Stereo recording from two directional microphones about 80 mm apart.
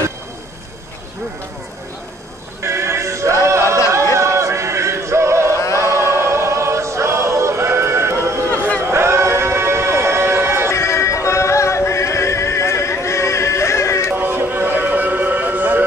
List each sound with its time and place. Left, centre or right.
2.6 s music: right
5.8 s choir: right
8.5 s a sound: centre
8.8 s a sound: right
10.7 s music: left
14.1 s music: right